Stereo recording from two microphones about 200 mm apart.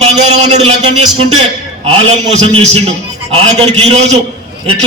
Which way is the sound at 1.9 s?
30° right (ahead or behind).